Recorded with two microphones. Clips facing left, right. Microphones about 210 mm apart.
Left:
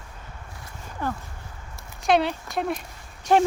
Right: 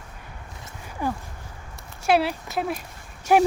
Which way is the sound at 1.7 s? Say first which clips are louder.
Even; 5° right (ahead or behind).